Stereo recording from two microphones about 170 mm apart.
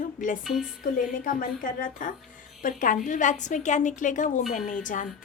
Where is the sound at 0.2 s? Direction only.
50° left (ahead or behind).